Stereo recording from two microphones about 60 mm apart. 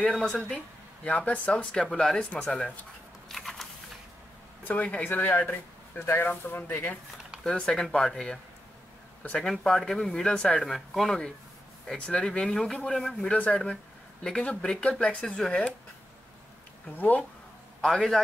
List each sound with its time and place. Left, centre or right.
0.1 s speech: centre
3.3 s a sound: centre
4.6 s speech: left
7.4 s speech: centre
9.4 s speech: centre
12.1 s speech: centre
13.3 s speech: left
16.9 s speech: left